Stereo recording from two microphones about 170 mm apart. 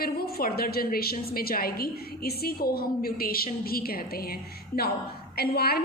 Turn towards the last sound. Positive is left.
turn(degrees=65)  # may be behind; listen again after turning